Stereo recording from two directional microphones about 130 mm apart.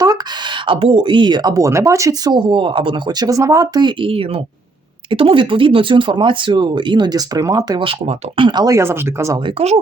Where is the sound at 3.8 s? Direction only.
45° right (ahead or behind); by 9.4 s 20° right (ahead or behind).